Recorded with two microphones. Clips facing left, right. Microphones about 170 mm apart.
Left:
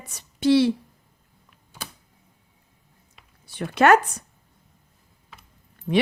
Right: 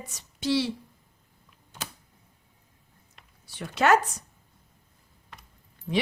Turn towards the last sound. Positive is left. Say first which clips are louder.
# left 6 dB
turn(degrees=50)  # may be behind; listen again after turning